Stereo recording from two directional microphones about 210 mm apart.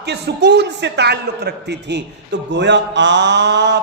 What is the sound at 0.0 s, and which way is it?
A man's voice, 50° right (ahead or behind).